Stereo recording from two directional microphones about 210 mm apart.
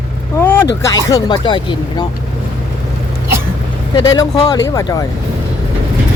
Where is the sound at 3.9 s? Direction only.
20° left (ahead or behind).